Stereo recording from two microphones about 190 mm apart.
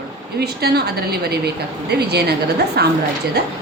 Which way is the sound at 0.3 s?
55° right (ahead or behind).